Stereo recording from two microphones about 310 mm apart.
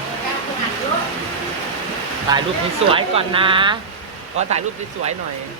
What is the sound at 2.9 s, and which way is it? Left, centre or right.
Speech, centre.